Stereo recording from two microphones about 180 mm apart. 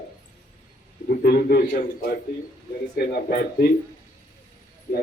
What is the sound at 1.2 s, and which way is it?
A man's voice, 60° left (ahead or behind).